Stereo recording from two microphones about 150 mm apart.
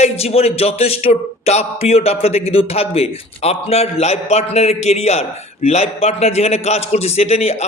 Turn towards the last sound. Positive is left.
turn(degrees=45)  # may be behind; listen again after turning